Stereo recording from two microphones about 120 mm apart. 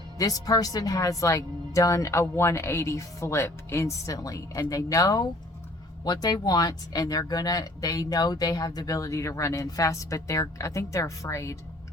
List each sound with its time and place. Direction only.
0.2 s speech: 30° left (ahead or behind)